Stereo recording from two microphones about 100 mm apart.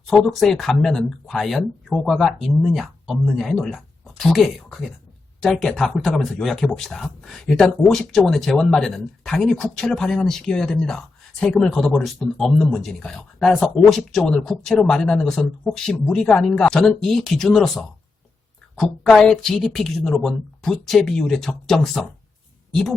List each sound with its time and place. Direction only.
0.1 s speech: centre (ahead or behind)
19.1 s speech: 5° left (ahead or behind)